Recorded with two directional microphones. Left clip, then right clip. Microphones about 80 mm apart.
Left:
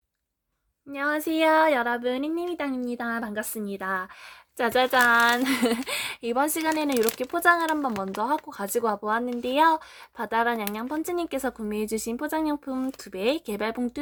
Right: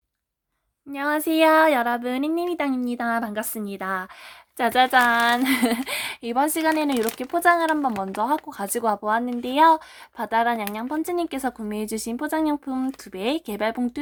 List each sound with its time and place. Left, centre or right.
0.9 s speech: right
4.5 s speech: right
7.9 s speech: right